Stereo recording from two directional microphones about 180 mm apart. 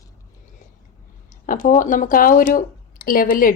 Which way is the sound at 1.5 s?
45° left (ahead or behind).